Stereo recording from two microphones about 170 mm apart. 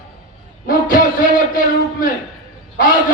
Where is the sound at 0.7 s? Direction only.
55° left (ahead or behind).